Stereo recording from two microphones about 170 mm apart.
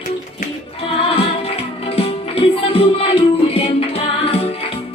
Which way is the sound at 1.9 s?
35° left (ahead or behind).